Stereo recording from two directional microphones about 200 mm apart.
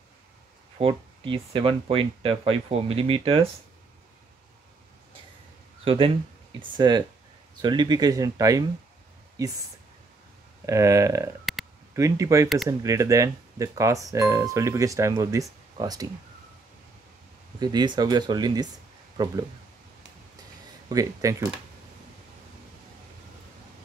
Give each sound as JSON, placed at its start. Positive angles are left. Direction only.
{"t": 0.7, "sound": "speech", "side_deg": -25}
{"t": 5.9, "sound": "speech", "side_deg": -25}
{"t": 10.6, "sound": "speech", "side_deg": -15}
{"t": 17.6, "sound": "speech", "side_deg": -20}
{"t": 20.9, "sound": "speech", "side_deg": -15}